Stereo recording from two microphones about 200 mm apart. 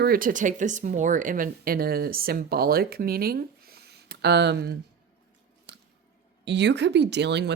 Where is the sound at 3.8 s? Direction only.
55° right (ahead or behind).